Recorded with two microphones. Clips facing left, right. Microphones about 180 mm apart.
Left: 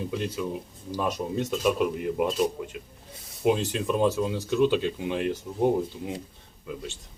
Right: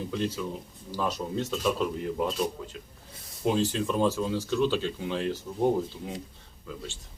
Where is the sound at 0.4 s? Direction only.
10° left (ahead or behind).